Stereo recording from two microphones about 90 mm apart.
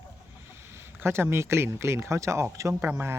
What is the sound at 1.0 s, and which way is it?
Speech, 25° right (ahead or behind).